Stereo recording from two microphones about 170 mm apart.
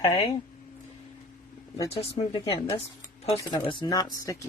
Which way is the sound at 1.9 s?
35° left (ahead or behind).